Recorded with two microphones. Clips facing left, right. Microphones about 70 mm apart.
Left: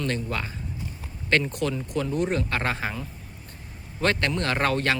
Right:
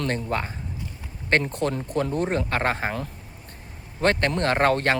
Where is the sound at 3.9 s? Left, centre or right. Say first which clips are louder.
Right 3 dB; right.